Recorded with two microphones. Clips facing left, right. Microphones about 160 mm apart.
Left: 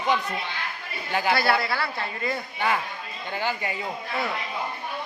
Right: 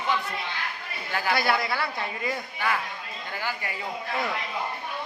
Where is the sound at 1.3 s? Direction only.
15° right (ahead or behind).